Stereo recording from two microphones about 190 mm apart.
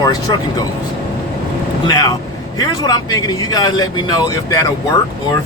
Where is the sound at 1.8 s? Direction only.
20° left (ahead or behind).